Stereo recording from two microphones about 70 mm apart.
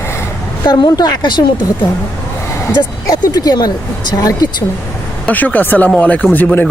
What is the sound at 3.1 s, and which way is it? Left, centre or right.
Speech, left.